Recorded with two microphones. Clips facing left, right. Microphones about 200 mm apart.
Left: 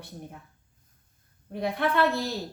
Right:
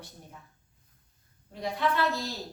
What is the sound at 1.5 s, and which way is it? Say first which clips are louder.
Speech: left 3 dB; 60° left (ahead or behind).